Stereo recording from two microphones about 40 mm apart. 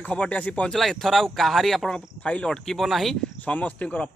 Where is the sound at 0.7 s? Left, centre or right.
Centre.